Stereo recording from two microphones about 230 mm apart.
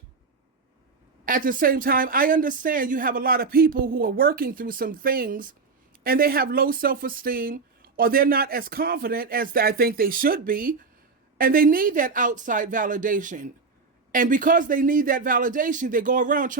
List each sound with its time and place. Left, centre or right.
1.2 s speech: right